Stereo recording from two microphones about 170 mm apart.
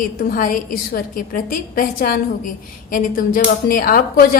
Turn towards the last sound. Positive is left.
turn(degrees=60)  # may be behind; listen again after turning